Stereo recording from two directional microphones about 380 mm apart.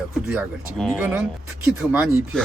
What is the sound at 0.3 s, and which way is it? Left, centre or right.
Speech, centre.